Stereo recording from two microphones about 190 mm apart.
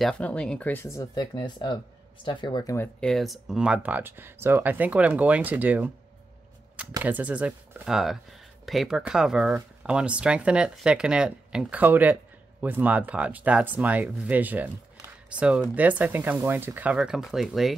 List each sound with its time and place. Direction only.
0.0 s speech: 5° left (ahead or behind)
3.0 s speech: centre (ahead or behind)
7.0 s speech: 10° right (ahead or behind)